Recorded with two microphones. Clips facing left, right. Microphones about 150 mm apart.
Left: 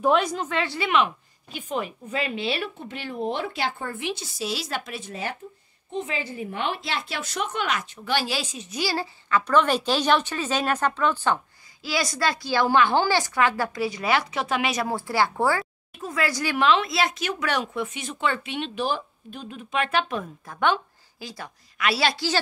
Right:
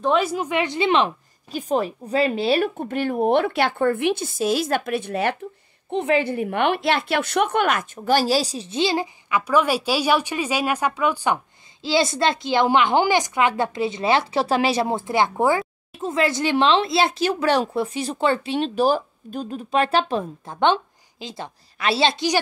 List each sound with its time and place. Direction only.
0.0 s speech: centre (ahead or behind)
11.8 s a woman's voice: 25° right (ahead or behind)